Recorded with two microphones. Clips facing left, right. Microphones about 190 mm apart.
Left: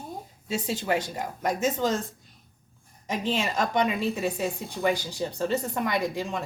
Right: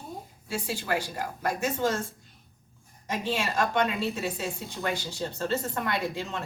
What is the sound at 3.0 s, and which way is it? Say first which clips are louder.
A woman's voice: left 2 dB; 20° left (ahead or behind).